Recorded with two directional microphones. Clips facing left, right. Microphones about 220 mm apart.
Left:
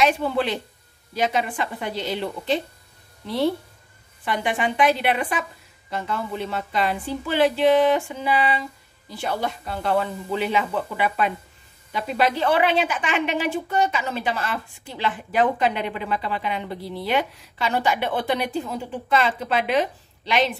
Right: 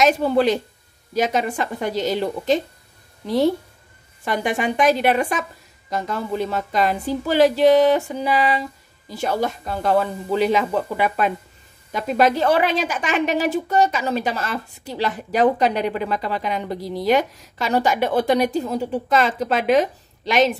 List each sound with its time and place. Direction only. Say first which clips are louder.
0.0 s a woman's voice: right 4 dB; 40° right (ahead or behind)